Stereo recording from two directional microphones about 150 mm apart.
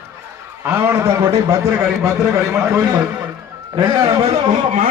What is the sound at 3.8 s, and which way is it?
Speech, 35° right (ahead or behind).